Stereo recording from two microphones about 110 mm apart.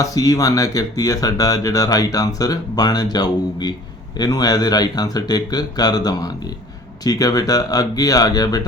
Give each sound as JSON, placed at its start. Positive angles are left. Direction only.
{"t": 0.0, "sound": "speech", "side_deg": 30}